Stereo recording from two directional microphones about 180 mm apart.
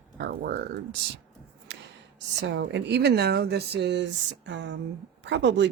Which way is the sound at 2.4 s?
75° right (ahead or behind).